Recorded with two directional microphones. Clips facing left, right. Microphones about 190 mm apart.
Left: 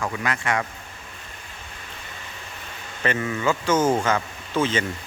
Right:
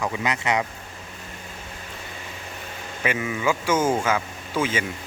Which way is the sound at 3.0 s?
10° right (ahead or behind).